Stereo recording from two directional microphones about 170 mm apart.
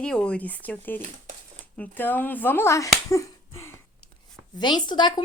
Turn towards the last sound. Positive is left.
turn(degrees=25)  # may be behind; listen again after turning